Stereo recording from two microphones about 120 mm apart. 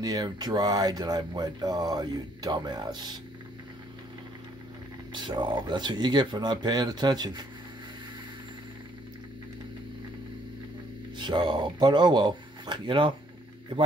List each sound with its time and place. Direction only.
0.0 s speech: 35° right (ahead or behind)
5.1 s speech: 40° right (ahead or behind)
11.1 s speech: 40° right (ahead or behind)